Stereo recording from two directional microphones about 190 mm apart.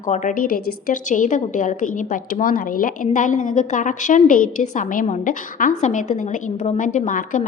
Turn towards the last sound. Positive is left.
turn(degrees=45)  # may be behind; listen again after turning